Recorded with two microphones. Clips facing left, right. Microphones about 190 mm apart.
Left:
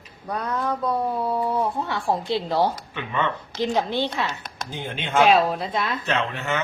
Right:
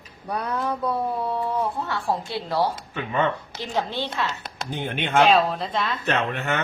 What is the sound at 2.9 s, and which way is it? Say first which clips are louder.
Speech: right 2 dB; 50° right (ahead or behind).